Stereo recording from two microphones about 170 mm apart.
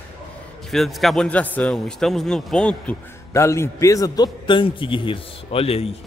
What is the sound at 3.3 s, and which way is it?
A man's voice, 15° left (ahead or behind).